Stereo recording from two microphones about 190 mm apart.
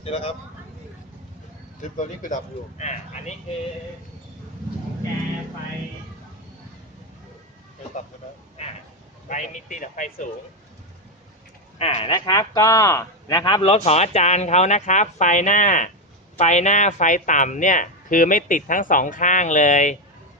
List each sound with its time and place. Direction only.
0.0 s speech: 30° left (ahead or behind)
1.8 s speech: 40° left (ahead or behind)
9.3 s speech: 40° left (ahead or behind)
11.8 s speech: 30° left (ahead or behind)